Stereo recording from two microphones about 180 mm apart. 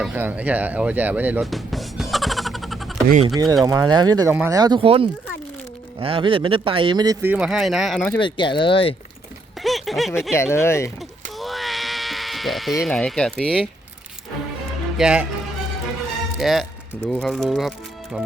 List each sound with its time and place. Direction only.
0.0 s speech: 10° right (ahead or behind)
3.2 s speech: 20° right (ahead or behind); by 8.0 s centre (ahead or behind)
8.2 s speech: 25° left (ahead or behind)
9.6 s a sound: centre (ahead or behind)
10.3 s speech: 15° left (ahead or behind)
11.3 s a sound: centre (ahead or behind)
14.9 s speech: 5° right (ahead or behind)
16.4 s speech: centre (ahead or behind)